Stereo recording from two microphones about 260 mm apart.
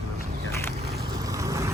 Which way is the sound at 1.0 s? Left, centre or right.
Centre.